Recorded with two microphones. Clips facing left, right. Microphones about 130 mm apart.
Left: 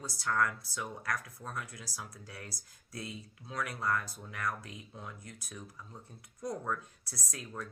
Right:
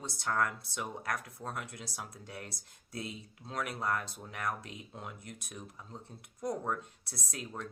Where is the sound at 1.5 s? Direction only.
60° right (ahead or behind).